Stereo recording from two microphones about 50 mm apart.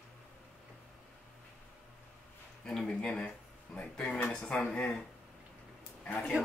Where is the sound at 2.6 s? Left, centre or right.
Left.